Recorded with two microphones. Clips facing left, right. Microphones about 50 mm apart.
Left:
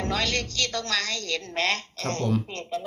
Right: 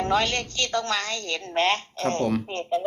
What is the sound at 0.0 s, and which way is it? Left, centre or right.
Speech, right.